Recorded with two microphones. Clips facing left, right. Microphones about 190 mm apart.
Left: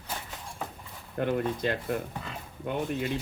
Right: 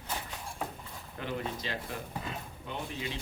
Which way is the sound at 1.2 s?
55° left (ahead or behind).